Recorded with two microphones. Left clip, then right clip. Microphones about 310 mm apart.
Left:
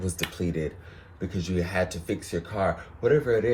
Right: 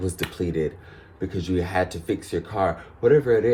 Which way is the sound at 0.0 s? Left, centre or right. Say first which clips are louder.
Right 3 dB; right.